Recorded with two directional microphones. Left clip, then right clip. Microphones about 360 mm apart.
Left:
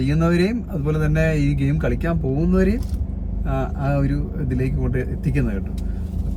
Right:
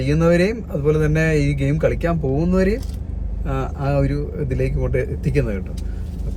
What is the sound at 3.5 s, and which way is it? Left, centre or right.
Speech, right.